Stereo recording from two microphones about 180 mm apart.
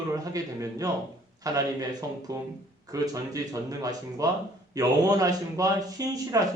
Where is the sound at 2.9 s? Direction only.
20° right (ahead or behind).